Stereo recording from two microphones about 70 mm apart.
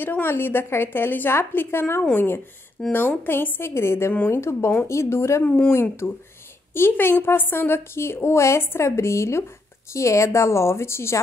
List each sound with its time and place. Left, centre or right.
0.0 s a woman's voice: left
5.4 s speech: left
5.7 s a woman's voice: left